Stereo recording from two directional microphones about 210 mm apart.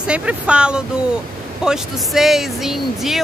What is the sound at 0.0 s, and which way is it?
Speech, 5° right (ahead or behind).